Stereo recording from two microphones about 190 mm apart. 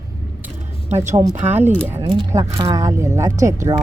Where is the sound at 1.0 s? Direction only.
15° right (ahead or behind).